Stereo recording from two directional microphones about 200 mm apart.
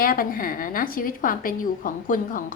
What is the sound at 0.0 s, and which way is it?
A woman's voice, 45° left (ahead or behind).